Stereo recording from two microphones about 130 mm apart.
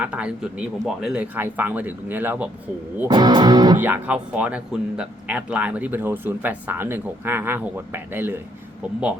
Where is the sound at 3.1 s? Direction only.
35° right (ahead or behind).